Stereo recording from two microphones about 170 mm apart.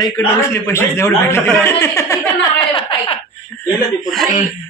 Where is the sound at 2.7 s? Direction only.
30° left (ahead or behind).